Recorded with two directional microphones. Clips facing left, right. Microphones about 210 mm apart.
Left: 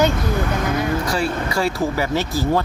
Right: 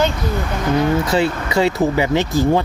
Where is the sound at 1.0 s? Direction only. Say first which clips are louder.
Right 3 dB; 25° right (ahead or behind).